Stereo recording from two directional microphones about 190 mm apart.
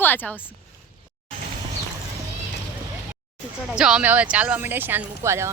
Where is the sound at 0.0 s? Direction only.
10° left (ahead or behind).